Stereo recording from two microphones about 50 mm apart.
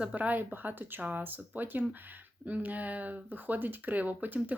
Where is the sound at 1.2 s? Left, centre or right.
Right.